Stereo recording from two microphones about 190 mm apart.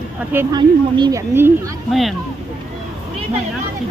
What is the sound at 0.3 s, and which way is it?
Speech, 20° right (ahead or behind).